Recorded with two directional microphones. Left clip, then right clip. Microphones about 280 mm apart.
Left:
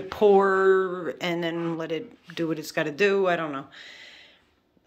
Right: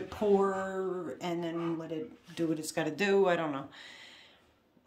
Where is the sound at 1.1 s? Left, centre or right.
Centre.